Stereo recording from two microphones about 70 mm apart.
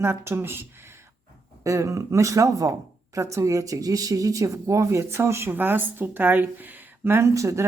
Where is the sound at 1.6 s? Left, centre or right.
Right.